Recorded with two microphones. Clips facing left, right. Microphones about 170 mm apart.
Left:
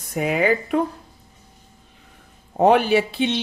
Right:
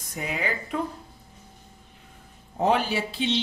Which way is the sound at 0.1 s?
60° left (ahead or behind).